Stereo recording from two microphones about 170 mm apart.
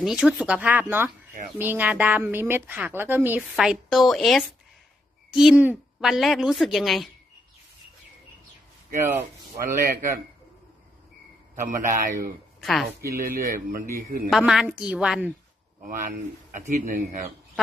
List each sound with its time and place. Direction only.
0.0 s speech: 5° right (ahead or behind)
3.5 s speech: centre (ahead or behind)
9.8 s speech: 60° right (ahead or behind)
11.6 s speech: 50° right (ahead or behind)
12.5 s speech: centre (ahead or behind)
13.1 s speech: 55° right (ahead or behind)
14.3 s speech: 5° right (ahead or behind)
15.9 s speech: 55° right (ahead or behind)